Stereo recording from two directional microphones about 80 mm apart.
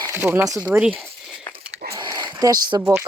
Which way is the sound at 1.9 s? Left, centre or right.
Right.